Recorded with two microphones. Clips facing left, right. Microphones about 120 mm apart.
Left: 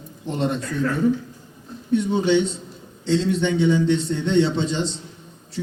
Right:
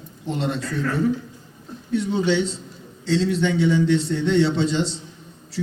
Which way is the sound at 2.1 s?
20° left (ahead or behind).